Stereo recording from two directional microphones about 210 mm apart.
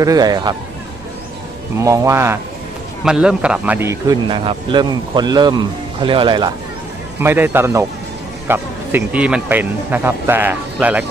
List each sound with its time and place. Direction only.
0.0 s speech: 20° right (ahead or behind)
1.8 s speech: 15° right (ahead or behind)
7.2 s speech: 10° right (ahead or behind)